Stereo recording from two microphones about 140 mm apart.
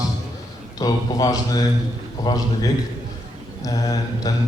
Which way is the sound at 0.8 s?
25° left (ahead or behind).